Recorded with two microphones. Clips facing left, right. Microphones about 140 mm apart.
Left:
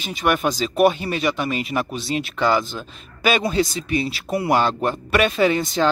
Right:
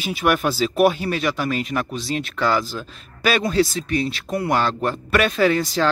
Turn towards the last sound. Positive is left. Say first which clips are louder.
# even
turn(degrees=0)  # may be behind; listen again after turning